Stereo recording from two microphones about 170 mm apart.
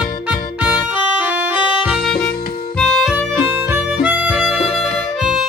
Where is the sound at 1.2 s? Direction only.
10° right (ahead or behind).